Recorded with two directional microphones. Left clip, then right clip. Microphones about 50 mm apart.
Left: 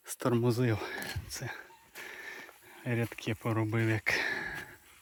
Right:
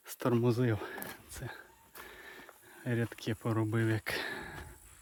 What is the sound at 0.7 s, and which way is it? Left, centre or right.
Speech, centre.